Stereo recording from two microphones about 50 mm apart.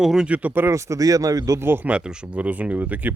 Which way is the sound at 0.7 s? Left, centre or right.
Right.